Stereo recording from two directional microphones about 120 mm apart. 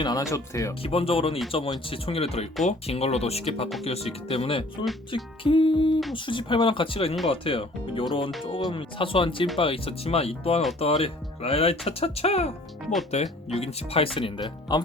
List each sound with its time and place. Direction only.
0.0 s speech: 30° left (ahead or behind)
0.8 s speech: 55° left (ahead or behind); by 14.8 s 35° left (ahead or behind)